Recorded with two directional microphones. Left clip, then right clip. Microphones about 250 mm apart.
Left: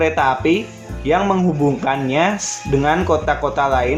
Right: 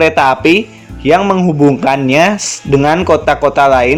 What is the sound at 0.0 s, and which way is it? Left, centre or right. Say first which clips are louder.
Speech: right 7 dB; right.